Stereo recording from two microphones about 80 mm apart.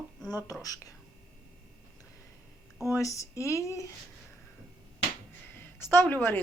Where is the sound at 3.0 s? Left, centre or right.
Left.